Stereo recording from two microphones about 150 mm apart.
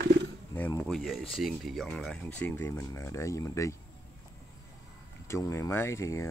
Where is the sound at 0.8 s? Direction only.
5° left (ahead or behind); by 3.7 s 20° left (ahead or behind).